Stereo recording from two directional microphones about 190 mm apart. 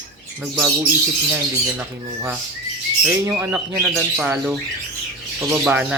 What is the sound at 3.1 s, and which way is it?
Speech, 10° right (ahead or behind).